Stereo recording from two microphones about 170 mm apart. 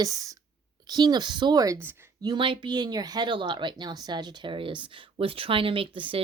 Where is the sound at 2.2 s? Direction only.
25° right (ahead or behind).